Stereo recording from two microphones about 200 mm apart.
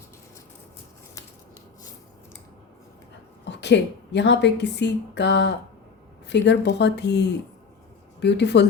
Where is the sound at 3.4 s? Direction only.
60° left (ahead or behind).